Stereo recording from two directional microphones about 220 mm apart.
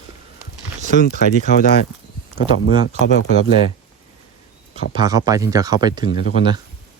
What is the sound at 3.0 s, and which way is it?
Speech, 55° left (ahead or behind).